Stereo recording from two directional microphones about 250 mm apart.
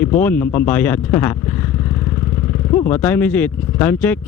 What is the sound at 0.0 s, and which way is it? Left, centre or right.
Speech, centre.